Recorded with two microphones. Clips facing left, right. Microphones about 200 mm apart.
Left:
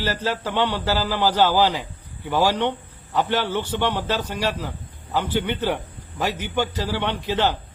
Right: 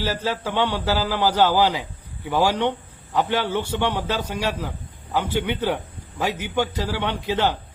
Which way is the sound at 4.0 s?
10° left (ahead or behind).